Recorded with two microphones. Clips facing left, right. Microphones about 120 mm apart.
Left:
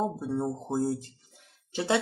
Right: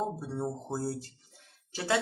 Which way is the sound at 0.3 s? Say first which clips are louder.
Left 5 dB; 20° left (ahead or behind).